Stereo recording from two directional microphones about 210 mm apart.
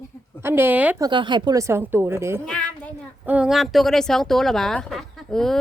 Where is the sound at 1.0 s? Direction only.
20° right (ahead or behind).